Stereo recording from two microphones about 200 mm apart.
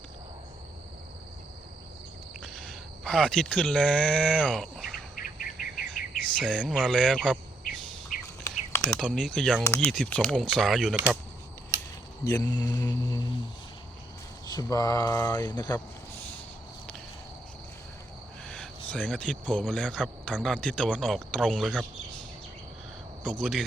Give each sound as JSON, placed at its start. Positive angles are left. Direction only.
{"t": 2.4, "sound": "speech", "side_deg": 5}
{"t": 5.1, "sound": "insect", "side_deg": 45}
{"t": 6.0, "sound": "cricket", "side_deg": 45}
{"t": 6.4, "sound": "speech", "side_deg": 5}
{"t": 8.1, "sound": "bird", "side_deg": 45}
{"t": 8.4, "sound": "a sound", "side_deg": 15}
{"t": 9.0, "sound": "speech", "side_deg": 5}
{"t": 12.2, "sound": "speech", "side_deg": 15}
{"t": 14.4, "sound": "speech", "side_deg": 20}
{"t": 18.4, "sound": "a sound", "side_deg": 5}
{"t": 18.9, "sound": "speech", "side_deg": 5}
{"t": 23.2, "sound": "speech", "side_deg": 0}